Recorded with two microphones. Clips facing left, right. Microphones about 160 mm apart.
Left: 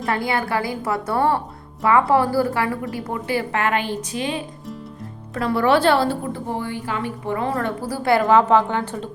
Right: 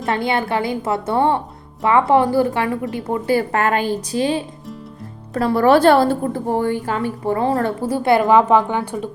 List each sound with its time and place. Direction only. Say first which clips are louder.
0.0 s a woman's voice: right 3 dB; 25° right (ahead or behind)
3.2 s a woman's voice: right 4 dB; 40° right (ahead or behind)
7.8 s a woman's voice: right 1 dB; 25° right (ahead or behind)